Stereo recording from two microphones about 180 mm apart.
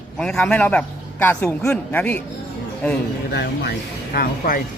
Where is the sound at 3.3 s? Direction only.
65° left (ahead or behind).